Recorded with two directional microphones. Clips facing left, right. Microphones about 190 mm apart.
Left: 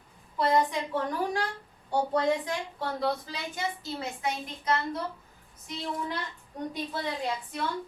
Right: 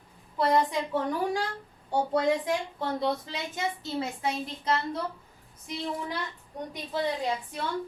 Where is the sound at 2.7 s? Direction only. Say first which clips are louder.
Right 1 dB; 20° right (ahead or behind).